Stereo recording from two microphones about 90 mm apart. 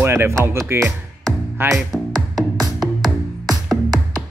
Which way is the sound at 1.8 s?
Centre (ahead or behind).